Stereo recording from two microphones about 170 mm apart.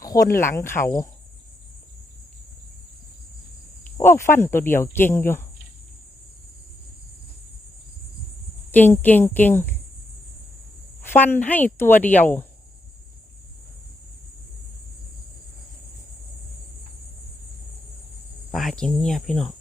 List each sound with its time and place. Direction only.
0.0 s speech: 20° left (ahead or behind)
3.9 s speech: 15° left (ahead or behind)
8.7 s speech: 10° left (ahead or behind)
11.0 s speech: 15° left (ahead or behind)
18.5 s speech: centre (ahead or behind)